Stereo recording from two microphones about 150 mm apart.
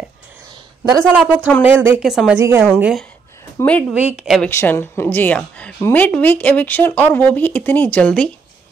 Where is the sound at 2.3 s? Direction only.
15° right (ahead or behind).